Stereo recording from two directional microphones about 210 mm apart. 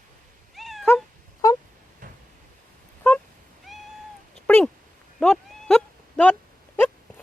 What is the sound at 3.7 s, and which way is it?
Cat, centre (ahead or behind).